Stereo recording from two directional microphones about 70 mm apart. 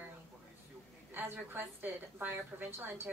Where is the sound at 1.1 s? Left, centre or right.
Right.